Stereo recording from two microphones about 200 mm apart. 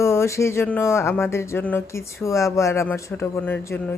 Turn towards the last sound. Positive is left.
turn(degrees=10)  # may be behind; listen again after turning